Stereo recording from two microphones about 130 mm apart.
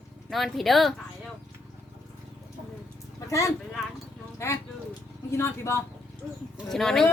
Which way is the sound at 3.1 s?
25° left (ahead or behind).